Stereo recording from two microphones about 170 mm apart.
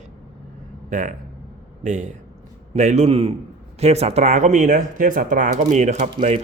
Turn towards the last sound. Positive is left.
turn(degrees=-45)  # may be behind; listen again after turning